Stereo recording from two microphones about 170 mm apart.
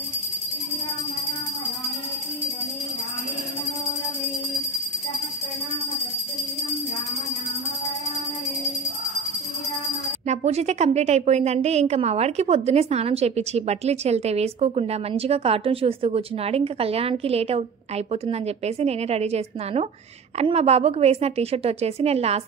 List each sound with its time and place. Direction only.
10.2 s a woman's voice: 40° right (ahead or behind)